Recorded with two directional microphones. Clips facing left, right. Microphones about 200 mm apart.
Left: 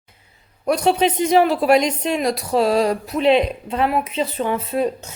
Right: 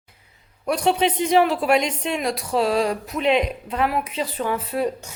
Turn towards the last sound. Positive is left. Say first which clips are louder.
# left 3 dB
turn(degrees=25)  # may be behind; listen again after turning